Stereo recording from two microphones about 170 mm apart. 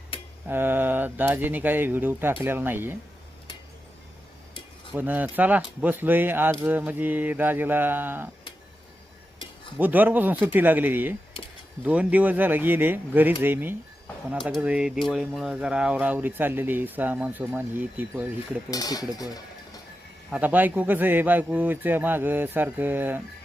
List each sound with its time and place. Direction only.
0.4 s speech: 10° right (ahead or behind)
4.9 s speech: 10° right (ahead or behind)
9.7 s speech: 10° right (ahead or behind)
18.7 s speech: 20° left (ahead or behind)
19.1 s dishes: 20° left (ahead or behind)
20.3 s speech: 10° right (ahead or behind)